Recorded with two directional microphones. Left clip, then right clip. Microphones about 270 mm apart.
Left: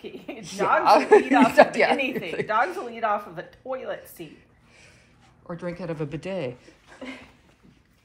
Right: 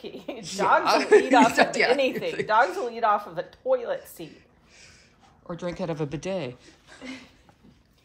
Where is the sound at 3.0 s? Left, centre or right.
Right.